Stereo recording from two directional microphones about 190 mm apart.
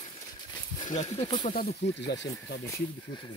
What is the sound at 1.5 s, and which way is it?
Speech, 50° left (ahead or behind).